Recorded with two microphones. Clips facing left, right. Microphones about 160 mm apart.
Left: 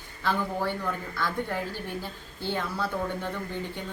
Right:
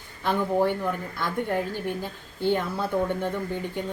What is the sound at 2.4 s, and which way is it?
Speech, 20° right (ahead or behind).